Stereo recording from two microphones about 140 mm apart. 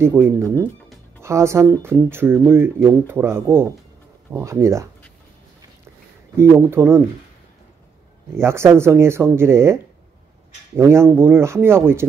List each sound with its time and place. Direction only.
0.0 s speech: 15° right (ahead or behind)
6.3 s speech: 20° right (ahead or behind)
8.4 s speech: 20° right (ahead or behind)
10.8 s speech: 20° right (ahead or behind)